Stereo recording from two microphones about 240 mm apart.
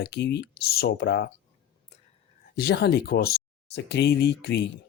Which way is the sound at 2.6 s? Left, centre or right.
Left.